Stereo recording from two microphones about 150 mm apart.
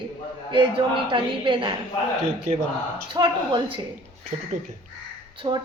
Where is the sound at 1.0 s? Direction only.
35° right (ahead or behind).